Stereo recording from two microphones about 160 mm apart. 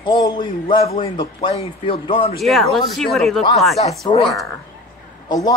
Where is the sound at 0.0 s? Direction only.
25° left (ahead or behind).